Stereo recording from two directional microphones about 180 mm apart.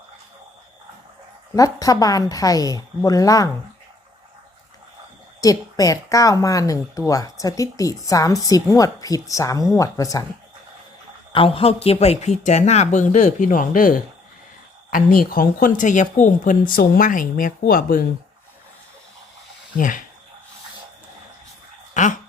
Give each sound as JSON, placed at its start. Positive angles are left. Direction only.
{"t": 1.5, "sound": "speech", "side_deg": 20}
{"t": 5.4, "sound": "speech", "side_deg": 20}
{"t": 11.3, "sound": "speech", "side_deg": 30}
{"t": 19.7, "sound": "speech", "side_deg": 50}
{"t": 21.9, "sound": "a sound", "side_deg": 45}